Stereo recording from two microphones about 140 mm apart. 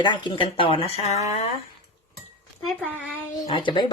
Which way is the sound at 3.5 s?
35° left (ahead or behind).